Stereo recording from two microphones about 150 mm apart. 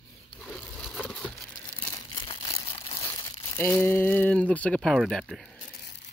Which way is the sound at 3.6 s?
15° left (ahead or behind).